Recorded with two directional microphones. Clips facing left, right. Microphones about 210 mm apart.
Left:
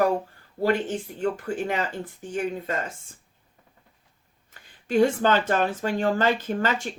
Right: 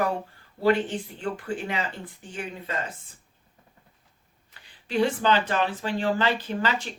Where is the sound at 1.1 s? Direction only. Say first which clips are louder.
Left 5 dB; 45° left (ahead or behind).